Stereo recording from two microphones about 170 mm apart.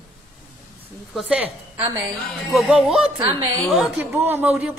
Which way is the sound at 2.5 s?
Centre (ahead or behind).